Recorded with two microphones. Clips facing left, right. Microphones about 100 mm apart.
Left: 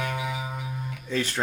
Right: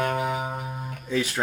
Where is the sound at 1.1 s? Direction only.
10° right (ahead or behind).